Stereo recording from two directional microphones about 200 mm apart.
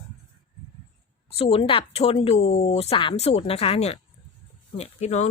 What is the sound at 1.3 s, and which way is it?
Speech, 30° left (ahead or behind).